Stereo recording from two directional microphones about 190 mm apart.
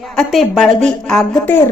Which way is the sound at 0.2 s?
Centre (ahead or behind).